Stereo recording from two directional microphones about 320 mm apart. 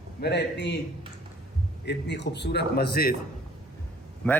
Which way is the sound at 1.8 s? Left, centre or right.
Left.